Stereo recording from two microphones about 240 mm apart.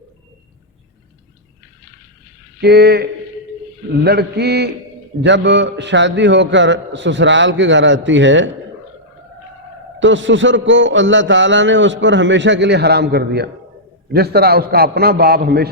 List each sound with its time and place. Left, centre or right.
2.6 s a man's voice: right
10.0 s a man's voice: right